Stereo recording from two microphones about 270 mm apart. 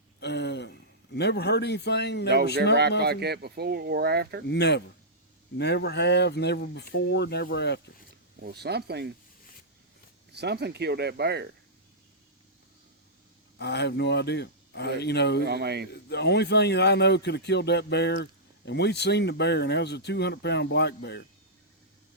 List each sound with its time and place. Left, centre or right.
0.2 s a man's voice: left
3.0 s speech: right
4.4 s speech: left
8.4 s speech: right
10.3 s speech: right
13.6 s speech: left
15.4 s speech: right
15.9 s speech: left